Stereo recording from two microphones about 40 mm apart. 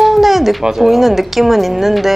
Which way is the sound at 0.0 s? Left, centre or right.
Centre.